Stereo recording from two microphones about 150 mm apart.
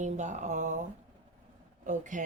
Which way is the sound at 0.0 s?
55° right (ahead or behind).